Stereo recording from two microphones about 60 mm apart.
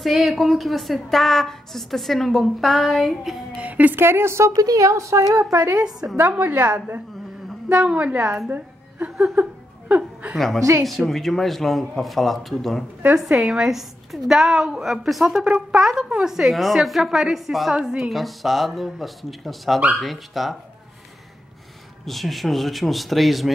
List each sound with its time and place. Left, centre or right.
0.0 s a woman's voice: centre
3.5 s a woman's voice: right
4.0 s speech: right
4.6 s speech: right
5.5 s speech: right
5.9 s speech: centre
6.1 s a woman's voice: right
8.5 s a sound: right
9.3 s laughter: right
10.3 s a woman's voice: centre
15.4 s a woman's voice: centre
22.0 s a woman's voice: centre